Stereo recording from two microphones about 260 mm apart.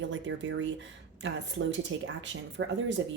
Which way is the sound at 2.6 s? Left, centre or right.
Right.